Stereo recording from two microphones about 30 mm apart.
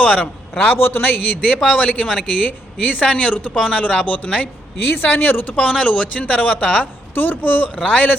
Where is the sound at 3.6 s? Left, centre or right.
Left.